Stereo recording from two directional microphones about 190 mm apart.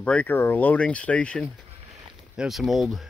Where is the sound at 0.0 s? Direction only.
5° left (ahead or behind).